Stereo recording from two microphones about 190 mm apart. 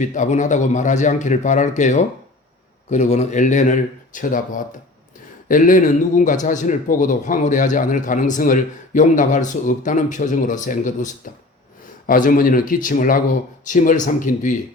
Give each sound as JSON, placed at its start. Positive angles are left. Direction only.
{"t": 0.0, "sound": "a man's voice", "side_deg": 40}